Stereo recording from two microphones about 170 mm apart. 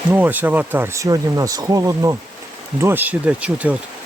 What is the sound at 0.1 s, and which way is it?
Speech, 10° right (ahead or behind).